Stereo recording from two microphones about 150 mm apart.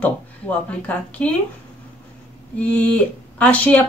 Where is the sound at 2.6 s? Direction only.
10° left (ahead or behind).